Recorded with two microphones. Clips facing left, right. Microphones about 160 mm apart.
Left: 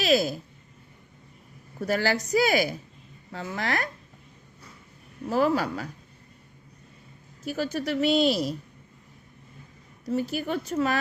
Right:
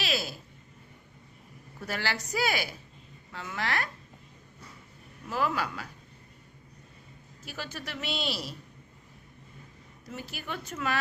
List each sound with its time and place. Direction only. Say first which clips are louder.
0.0 s a sound: left 10 dB; 45° left (ahead or behind)
1.8 s a woman's voice: left 9 dB; 40° left (ahead or behind)
5.2 s speech: left 7 dB; 40° left (ahead or behind)
7.4 s a woman's voice: left 12 dB; 40° left (ahead or behind)
10.1 s speech: left 12 dB; 40° left (ahead or behind)